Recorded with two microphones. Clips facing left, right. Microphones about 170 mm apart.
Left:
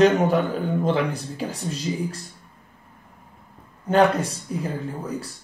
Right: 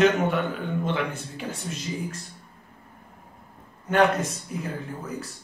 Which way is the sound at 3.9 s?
30° left (ahead or behind).